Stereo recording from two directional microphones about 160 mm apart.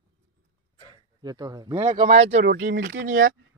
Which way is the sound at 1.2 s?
25° right (ahead or behind).